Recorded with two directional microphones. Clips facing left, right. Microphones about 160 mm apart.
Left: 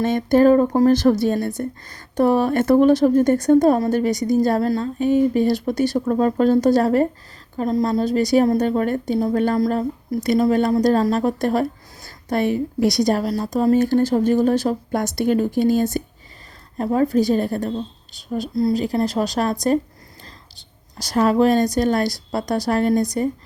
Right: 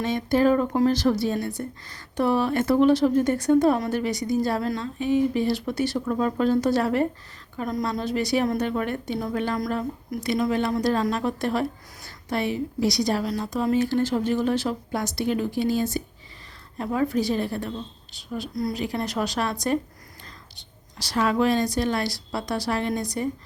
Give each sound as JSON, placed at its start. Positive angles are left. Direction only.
{"t": 0.0, "sound": "a woman's voice", "side_deg": 50}
{"t": 9.6, "sound": "a woman's voice", "side_deg": 30}
{"t": 21.0, "sound": "speech", "side_deg": 45}